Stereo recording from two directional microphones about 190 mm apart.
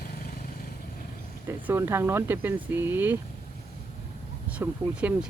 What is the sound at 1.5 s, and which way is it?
Speech, 10° right (ahead or behind).